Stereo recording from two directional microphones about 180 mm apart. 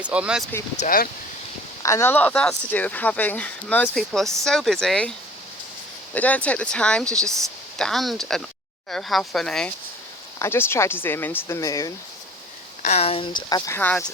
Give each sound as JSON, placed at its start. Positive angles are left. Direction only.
{"t": 0.0, "sound": "speech", "side_deg": -5}
{"t": 0.8, "sound": "speech", "side_deg": 50}
{"t": 1.8, "sound": "speech", "side_deg": 15}
{"t": 6.1, "sound": "speech", "side_deg": 10}
{"t": 12.8, "sound": "speech", "side_deg": 35}